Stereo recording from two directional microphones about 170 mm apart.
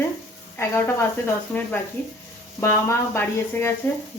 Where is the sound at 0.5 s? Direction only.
15° left (ahead or behind).